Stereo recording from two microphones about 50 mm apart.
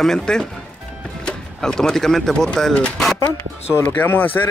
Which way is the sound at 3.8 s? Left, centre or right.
Left.